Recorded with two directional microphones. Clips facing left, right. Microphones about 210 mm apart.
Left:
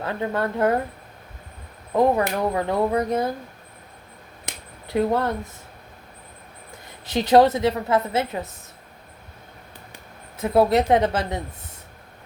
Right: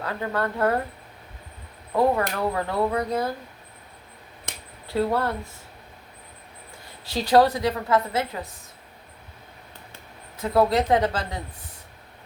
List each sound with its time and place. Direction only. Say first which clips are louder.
0.0 s a woman's voice: left 2 dB; 25° left (ahead or behind)
2.0 s a woman's voice: left 2 dB; 20° left (ahead or behind)
4.9 s a woman's voice: left 2 dB; 20° left (ahead or behind)
7.0 s a woman's voice: left 3 dB; 20° left (ahead or behind)
10.3 s a woman's voice: left 3 dB; 25° left (ahead or behind)